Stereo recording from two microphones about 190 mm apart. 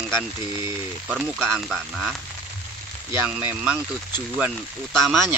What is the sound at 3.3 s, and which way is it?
Speech, 10° right (ahead or behind).